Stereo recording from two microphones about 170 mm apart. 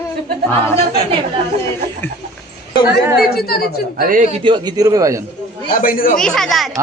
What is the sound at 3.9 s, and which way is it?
Speech, 50° right (ahead or behind).